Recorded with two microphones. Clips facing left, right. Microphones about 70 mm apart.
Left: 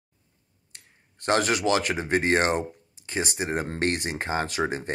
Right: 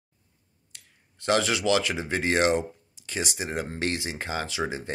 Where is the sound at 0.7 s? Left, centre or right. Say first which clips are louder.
Left 1 dB; left.